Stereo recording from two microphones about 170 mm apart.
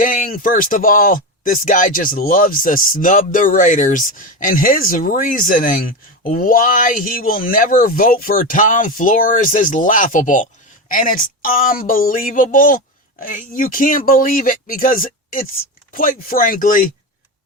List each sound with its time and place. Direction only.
0.0 s speech: 55° left (ahead or behind)